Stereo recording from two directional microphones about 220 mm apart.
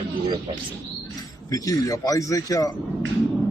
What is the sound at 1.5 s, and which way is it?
A man's voice, 15° left (ahead or behind).